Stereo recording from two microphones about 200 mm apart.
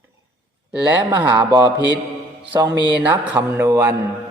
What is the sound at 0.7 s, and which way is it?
Speech, 5° right (ahead or behind).